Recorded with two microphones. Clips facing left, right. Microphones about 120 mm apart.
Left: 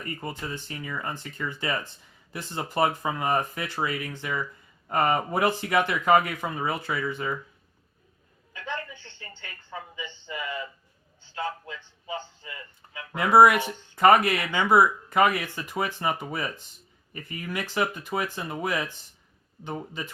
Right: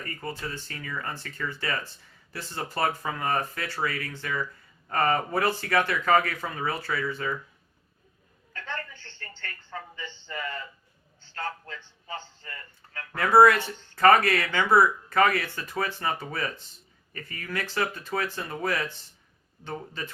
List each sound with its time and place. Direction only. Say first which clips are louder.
0.0 s speech: left 1 dB; 20° left (ahead or behind)
8.5 s a sound: left 2 dB; 15° left (ahead or behind)
11.2 s a man's voice: left 3 dB; 10° left (ahead or behind)